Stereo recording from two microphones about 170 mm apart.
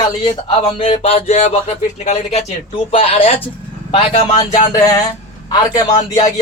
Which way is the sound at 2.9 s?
35° left (ahead or behind).